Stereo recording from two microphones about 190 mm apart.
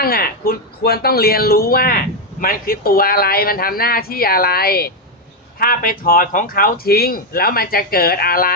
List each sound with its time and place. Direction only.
0.0 s speech: 50° left (ahead or behind)